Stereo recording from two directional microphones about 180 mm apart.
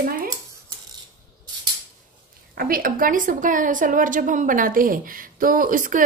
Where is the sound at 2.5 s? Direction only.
55° right (ahead or behind).